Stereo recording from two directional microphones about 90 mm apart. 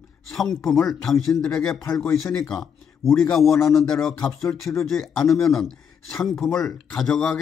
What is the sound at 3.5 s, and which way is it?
Speech, 35° left (ahead or behind).